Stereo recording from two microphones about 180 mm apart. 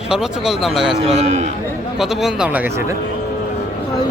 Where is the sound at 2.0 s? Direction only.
Centre (ahead or behind).